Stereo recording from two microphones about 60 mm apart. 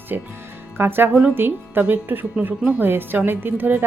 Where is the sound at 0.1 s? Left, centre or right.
Right.